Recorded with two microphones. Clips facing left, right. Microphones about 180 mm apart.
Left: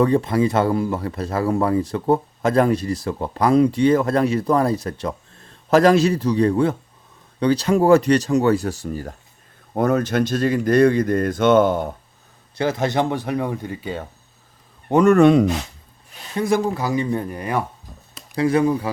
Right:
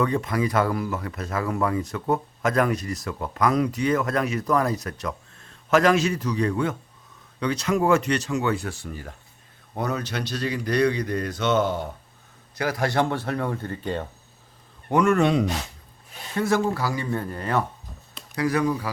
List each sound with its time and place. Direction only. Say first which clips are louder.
0.0 s speech: left 6 dB; 30° left (ahead or behind); by 11.9 s 50° left (ahead or behind)
12.5 s speech: left 3 dB; 25° left (ahead or behind); by 14.1 s 5° left (ahead or behind)
15.0 s speech: left 8 dB; 45° left (ahead or behind)
16.3 s speech: left 3 dB; 15° left (ahead or behind)
18.3 s speech: left 5 dB; 25° left (ahead or behind)